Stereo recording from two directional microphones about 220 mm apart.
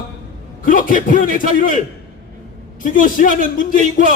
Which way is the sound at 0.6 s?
40° left (ahead or behind).